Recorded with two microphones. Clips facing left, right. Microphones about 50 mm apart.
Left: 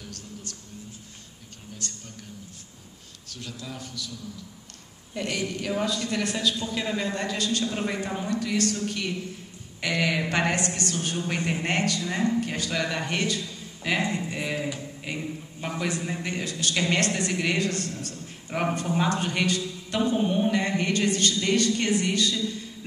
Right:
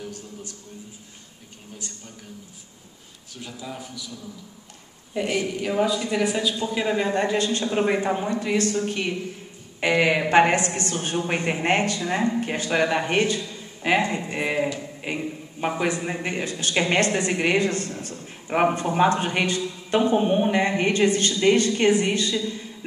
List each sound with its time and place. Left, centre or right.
1.8 s a sound: centre
3.3 s a woman's voice: centre
5.1 s a woman's voice: centre; by 22.6 s right